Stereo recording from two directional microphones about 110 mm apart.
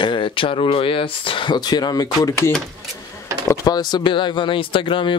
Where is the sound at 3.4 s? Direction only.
30° left (ahead or behind); by 5.1 s 50° left (ahead or behind).